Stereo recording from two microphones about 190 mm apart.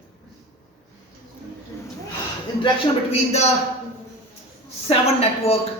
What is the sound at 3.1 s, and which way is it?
Speech, 35° left (ahead or behind).